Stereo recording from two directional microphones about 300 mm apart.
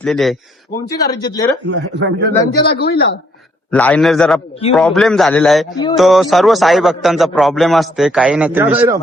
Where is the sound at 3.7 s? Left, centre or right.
Centre.